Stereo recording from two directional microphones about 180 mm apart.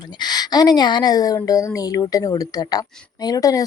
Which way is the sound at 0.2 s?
20° left (ahead or behind).